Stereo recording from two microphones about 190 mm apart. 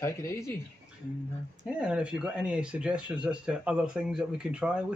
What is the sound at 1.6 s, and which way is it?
Speech, 5° right (ahead or behind).